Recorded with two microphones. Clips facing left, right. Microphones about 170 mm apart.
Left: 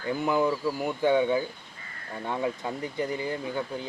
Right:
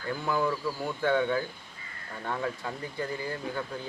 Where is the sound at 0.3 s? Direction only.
20° left (ahead or behind).